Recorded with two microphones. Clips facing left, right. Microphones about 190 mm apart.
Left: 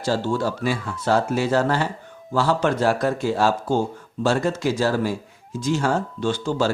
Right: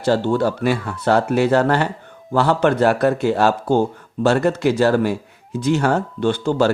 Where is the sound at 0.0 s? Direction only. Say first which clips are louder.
Right 5 dB; 60° right (ahead or behind).